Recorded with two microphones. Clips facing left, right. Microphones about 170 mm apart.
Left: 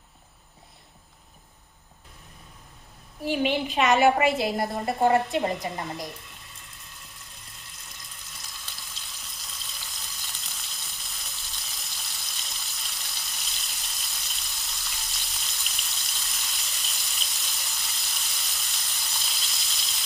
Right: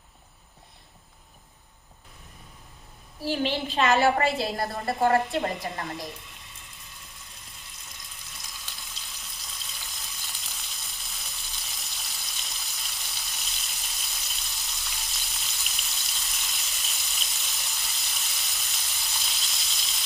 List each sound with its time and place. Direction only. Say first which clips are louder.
3.3 s a woman's voice: left 2 dB; 10° left (ahead or behind)
5.4 s a woman's voice: left 2 dB; centre (ahead or behind)
7.9 s a sound: even; centre (ahead or behind)